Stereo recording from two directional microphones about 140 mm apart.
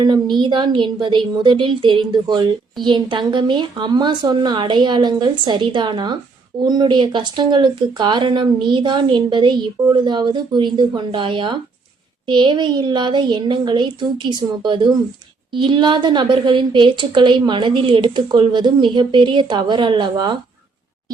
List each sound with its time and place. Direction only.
0.0 s a woman's voice: 30° right (ahead or behind)